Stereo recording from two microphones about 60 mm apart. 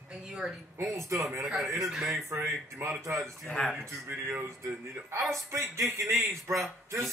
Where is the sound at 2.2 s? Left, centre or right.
Right.